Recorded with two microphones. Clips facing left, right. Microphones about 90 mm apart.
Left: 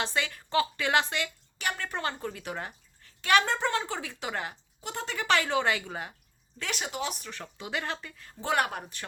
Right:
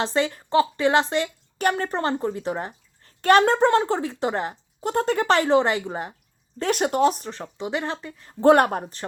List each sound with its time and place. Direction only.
0.0 s speech: 30° right (ahead or behind)
1.5 s speech: 45° right (ahead or behind); by 3.1 s 30° right (ahead or behind)
3.2 s speech: 45° right (ahead or behind)
4.9 s speech: 45° right (ahead or behind); by 6.1 s 30° right (ahead or behind)
6.6 s speech: 45° right (ahead or behind); by 8.4 s 25° right (ahead or behind)
8.4 s speech: 45° right (ahead or behind)